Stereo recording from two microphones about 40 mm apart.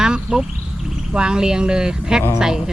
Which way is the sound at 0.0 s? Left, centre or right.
Centre.